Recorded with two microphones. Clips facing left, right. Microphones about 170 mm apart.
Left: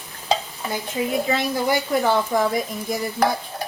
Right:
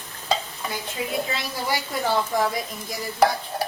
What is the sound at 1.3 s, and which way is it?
A woman's voice, 55° left (ahead or behind).